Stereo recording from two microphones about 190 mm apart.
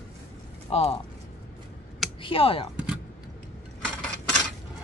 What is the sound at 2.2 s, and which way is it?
Speech, 30° left (ahead or behind).